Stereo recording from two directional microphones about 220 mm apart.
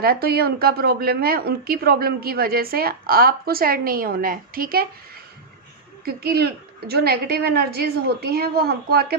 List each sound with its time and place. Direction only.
0.0 s a woman's voice: 45° right (ahead or behind)
6.1 s a woman's voice: 45° right (ahead or behind)